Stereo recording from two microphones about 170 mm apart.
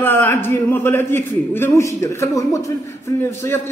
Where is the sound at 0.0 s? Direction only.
10° left (ahead or behind).